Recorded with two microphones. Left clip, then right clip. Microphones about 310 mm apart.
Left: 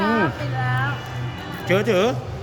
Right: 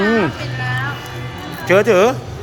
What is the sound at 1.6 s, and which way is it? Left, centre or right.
Speech, centre.